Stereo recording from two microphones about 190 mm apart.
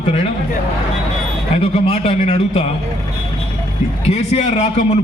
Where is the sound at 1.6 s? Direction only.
30° left (ahead or behind).